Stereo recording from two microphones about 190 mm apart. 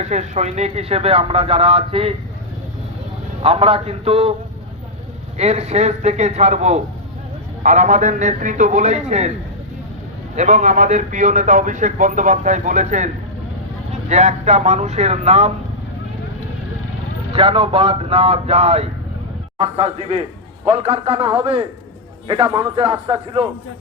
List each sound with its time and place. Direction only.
0.0 s a man's voice: 40° right (ahead or behind)
3.4 s a man's voice: 30° right (ahead or behind)
5.4 s a man's voice: 35° right (ahead or behind)
10.3 s a man's voice: 40° right (ahead or behind)
14.1 s a man's voice: 35° right (ahead or behind)
17.3 s a man's voice: 30° right (ahead or behind)